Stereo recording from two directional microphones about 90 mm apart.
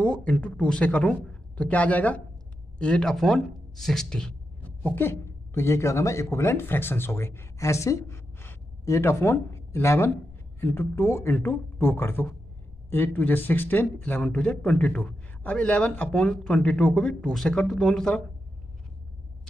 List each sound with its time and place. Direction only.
0.0 s a man's voice: 15° left (ahead or behind)
4.6 s speech: 20° left (ahead or behind)